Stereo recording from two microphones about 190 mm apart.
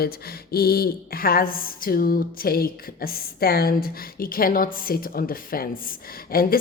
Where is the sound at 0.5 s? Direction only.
55° left (ahead or behind).